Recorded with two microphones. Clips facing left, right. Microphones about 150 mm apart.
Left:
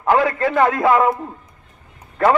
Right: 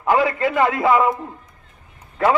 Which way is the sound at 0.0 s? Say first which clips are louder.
Left 1 dB; 5° right (ahead or behind).